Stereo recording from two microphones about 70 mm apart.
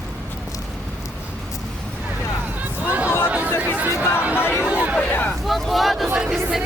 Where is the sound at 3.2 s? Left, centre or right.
Centre.